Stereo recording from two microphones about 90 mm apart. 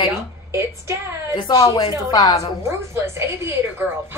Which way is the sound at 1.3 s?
45° left (ahead or behind).